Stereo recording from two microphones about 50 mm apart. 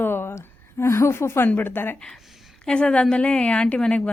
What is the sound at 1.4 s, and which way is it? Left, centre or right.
Speech, left.